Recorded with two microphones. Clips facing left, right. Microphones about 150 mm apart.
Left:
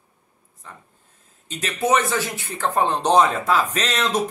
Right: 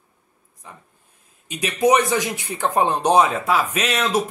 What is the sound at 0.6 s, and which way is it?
Speech, 15° right (ahead or behind).